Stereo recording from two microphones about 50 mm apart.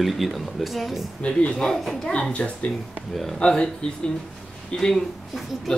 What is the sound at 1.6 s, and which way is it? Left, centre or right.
Speech, centre.